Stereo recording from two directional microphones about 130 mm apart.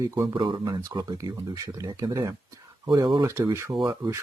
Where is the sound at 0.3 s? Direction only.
40° right (ahead or behind).